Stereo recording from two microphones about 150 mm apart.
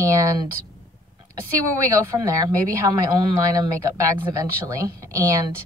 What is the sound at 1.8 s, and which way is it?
Speech, 20° right (ahead or behind).